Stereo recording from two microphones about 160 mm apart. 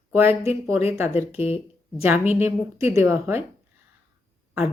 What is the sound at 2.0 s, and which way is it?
A woman's voice, 15° right (ahead or behind).